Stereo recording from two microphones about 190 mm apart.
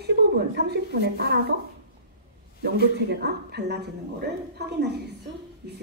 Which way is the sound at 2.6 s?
60° right (ahead or behind).